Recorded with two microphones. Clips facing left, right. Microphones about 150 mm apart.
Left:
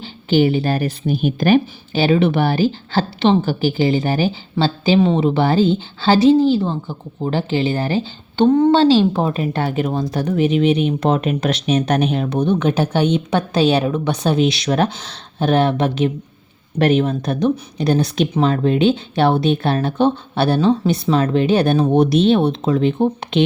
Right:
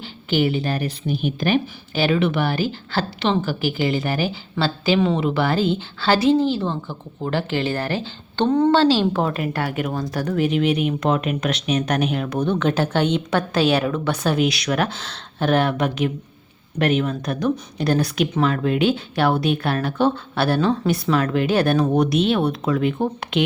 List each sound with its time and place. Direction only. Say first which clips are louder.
0.3 s a woman's voice: left 5 dB; 30° left (ahead or behind)
1.9 s a woman's voice: left 4 dB; 30° left (ahead or behind); by 8.7 s 10° left (ahead or behind)
8.7 s a woman's voice: left 4 dB; 20° left (ahead or behind)